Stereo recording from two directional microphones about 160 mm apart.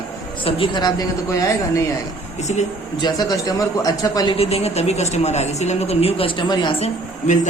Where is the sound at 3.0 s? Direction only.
25° left (ahead or behind).